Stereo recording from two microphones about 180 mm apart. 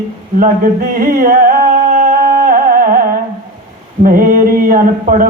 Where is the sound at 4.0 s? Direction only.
50° right (ahead or behind).